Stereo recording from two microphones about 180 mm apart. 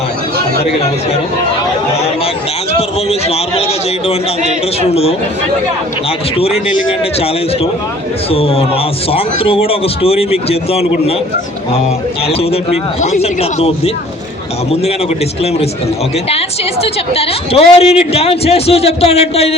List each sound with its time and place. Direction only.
2.7 s speech: 35° left (ahead or behind)
4.8 s speech: 35° left (ahead or behind)
6.3 s speech: 35° left (ahead or behind)
8.3 s speech: 30° left (ahead or behind)
12.3 s speech: 35° left (ahead or behind)
16.8 s speech: 35° left (ahead or behind)